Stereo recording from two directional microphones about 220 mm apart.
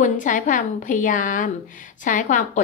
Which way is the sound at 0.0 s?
35° left (ahead or behind).